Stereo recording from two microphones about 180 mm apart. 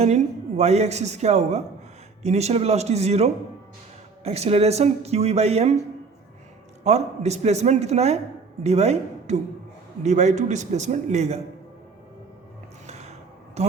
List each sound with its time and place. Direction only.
0.0 s speech: 35° right (ahead or behind)
6.8 s a woman's voice: 40° right (ahead or behind)
12.9 s music: 35° right (ahead or behind)
13.6 s speech: 35° right (ahead or behind)